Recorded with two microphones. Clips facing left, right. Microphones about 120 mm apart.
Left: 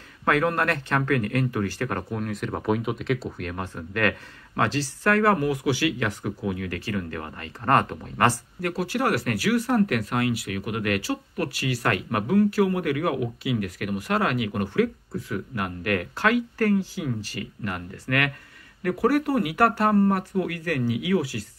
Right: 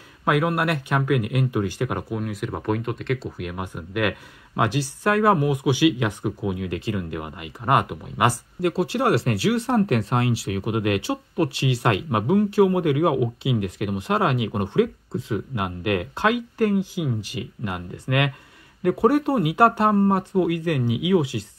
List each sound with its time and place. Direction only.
0.2 s speech: 15° right (ahead or behind)
8.5 s speech: 25° right (ahead or behind)